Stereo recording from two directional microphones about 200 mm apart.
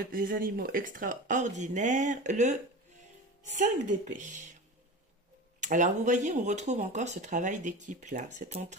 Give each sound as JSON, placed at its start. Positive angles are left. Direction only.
{"t": 0.1, "sound": "speech", "side_deg": -45}
{"t": 5.6, "sound": "speech", "side_deg": -40}